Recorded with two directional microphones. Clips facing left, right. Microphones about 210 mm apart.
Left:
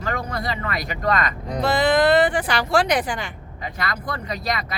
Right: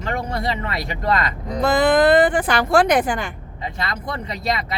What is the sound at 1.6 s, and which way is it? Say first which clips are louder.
Speech: right 3 dB; 50° right (ahead or behind).